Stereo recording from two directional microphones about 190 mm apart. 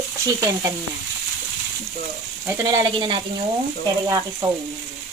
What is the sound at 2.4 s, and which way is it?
Speech, 20° right (ahead or behind).